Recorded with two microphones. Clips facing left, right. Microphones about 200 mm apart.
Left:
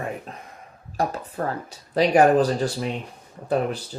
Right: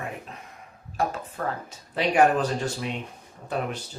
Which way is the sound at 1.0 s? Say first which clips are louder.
Left 3 dB; 35° left (ahead or behind).